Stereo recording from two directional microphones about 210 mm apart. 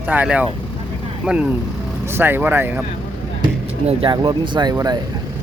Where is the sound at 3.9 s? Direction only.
25° right (ahead or behind).